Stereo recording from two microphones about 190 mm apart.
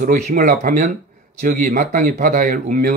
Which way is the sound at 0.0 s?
40° right (ahead or behind).